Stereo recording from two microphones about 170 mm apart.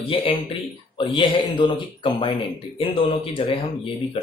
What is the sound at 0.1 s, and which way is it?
Speech, 30° left (ahead or behind).